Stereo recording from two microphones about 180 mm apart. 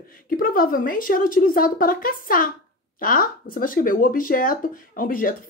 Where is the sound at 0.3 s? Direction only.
50° left (ahead or behind).